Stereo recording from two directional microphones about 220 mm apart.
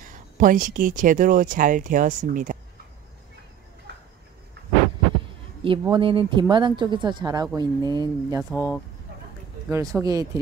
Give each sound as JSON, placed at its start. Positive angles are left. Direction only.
{"t": 0.0, "sound": "speech", "side_deg": -40}
{"t": 5.6, "sound": "a woman's voice", "side_deg": -25}
{"t": 8.5, "sound": "speech", "side_deg": 10}
{"t": 9.7, "sound": "speech", "side_deg": -15}